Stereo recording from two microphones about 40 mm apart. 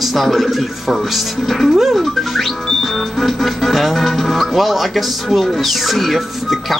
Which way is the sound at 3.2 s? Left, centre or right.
Centre.